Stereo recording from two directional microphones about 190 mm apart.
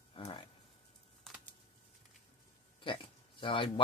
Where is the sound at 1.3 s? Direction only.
Centre (ahead or behind).